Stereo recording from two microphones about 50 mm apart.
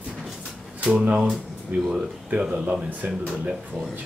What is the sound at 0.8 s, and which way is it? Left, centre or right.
Speech, centre.